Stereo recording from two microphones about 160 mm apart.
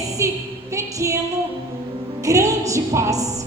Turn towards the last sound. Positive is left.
turn(degrees=-20)  # may be behind; listen again after turning